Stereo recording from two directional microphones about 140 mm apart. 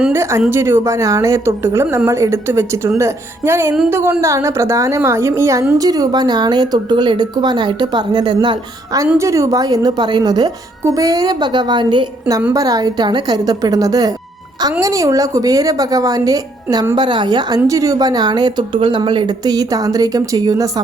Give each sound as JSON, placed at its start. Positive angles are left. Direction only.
{"t": 0.1, "sound": "a woman's voice", "side_deg": -20}